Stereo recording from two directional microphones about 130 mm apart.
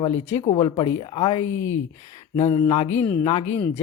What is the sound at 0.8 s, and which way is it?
Speech, 45° left (ahead or behind).